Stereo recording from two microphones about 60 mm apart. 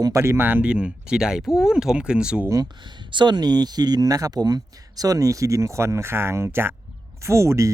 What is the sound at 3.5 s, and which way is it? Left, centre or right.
Speech, right.